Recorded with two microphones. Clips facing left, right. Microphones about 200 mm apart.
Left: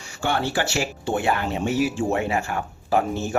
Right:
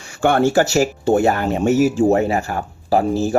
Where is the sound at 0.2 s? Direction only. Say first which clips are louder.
Right 9 dB; 50° right (ahead or behind).